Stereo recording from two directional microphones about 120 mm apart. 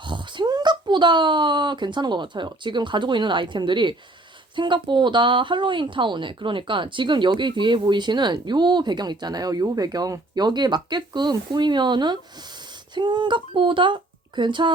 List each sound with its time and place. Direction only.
0.0 s speech: 40° right (ahead or behind)